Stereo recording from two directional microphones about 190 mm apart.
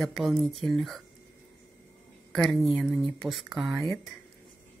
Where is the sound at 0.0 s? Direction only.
Centre (ahead or behind).